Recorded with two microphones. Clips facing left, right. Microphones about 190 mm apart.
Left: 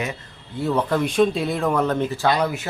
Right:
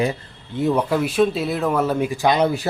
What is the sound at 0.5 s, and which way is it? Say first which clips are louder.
Speech: right 2 dB; 15° right (ahead or behind).